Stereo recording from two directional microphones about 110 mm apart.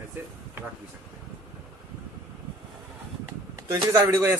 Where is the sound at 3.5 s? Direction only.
30° right (ahead or behind).